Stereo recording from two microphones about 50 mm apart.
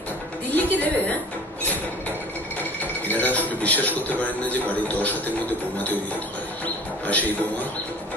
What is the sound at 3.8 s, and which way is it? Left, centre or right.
Speech, left.